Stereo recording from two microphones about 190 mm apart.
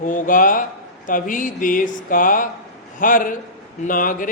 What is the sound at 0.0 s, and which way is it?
Speech, 45° left (ahead or behind).